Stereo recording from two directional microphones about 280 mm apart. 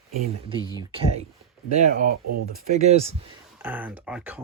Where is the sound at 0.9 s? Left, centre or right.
Right.